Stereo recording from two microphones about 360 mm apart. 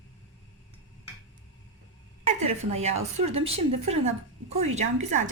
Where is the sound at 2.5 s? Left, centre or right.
Centre.